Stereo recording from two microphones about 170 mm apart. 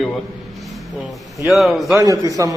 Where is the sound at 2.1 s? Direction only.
20° right (ahead or behind).